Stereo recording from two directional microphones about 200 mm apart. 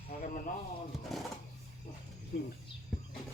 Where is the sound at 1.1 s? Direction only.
Centre (ahead or behind).